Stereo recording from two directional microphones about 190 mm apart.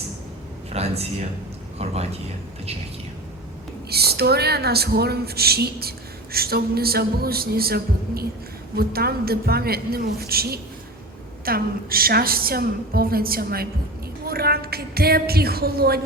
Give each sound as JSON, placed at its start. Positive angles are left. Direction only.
{"t": 0.7, "sound": "speech", "side_deg": -35}
{"t": 3.8, "sound": "a woman's voice", "side_deg": -55}